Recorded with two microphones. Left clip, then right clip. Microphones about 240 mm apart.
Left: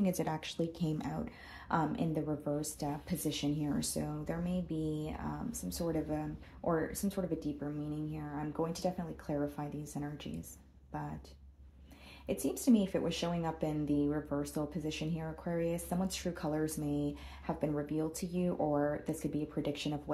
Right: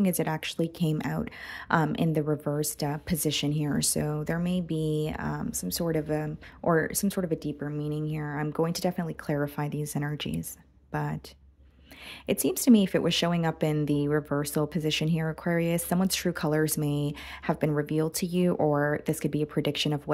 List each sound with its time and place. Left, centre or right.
0.0 s speech: right
12.3 s speech: right